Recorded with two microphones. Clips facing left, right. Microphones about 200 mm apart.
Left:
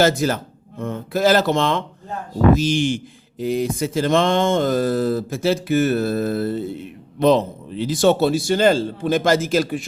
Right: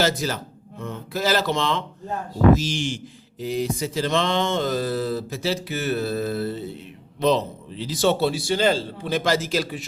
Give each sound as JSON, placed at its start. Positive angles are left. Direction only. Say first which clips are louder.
{"t": 0.0, "sound": "speech", "louder": "left 6 dB", "side_deg": 50}